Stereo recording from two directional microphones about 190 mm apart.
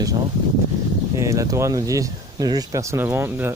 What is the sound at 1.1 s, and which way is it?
Speech, 15° right (ahead or behind).